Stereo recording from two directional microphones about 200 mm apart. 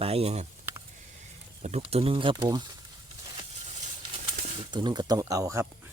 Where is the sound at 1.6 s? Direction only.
35° right (ahead or behind).